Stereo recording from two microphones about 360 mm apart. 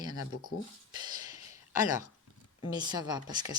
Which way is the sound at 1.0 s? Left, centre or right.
Centre.